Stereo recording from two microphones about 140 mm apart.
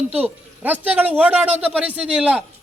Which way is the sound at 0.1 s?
10° right (ahead or behind).